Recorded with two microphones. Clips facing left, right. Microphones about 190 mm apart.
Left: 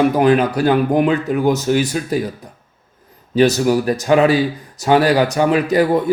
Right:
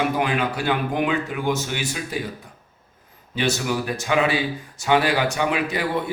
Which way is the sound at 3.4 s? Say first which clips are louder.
Left 10 dB; 40° left (ahead or behind).